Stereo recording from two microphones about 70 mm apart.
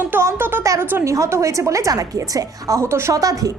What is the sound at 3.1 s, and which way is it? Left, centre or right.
Speech, right.